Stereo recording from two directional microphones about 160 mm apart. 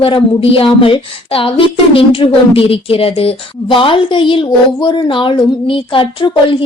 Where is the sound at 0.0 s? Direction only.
35° left (ahead or behind).